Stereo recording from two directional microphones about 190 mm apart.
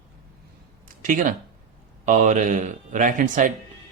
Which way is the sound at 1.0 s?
45° right (ahead or behind).